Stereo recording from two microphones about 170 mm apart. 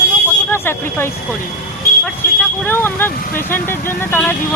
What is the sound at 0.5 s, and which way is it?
Speech, 15° left (ahead or behind).